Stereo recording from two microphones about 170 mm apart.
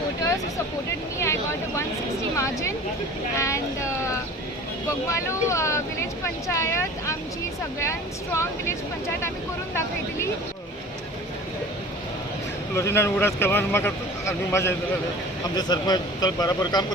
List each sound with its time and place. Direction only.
1.2 s a sound: 15° left (ahead or behind)
2.3 s speech: 15° left (ahead or behind)
12.7 s a man's voice: 15° left (ahead or behind)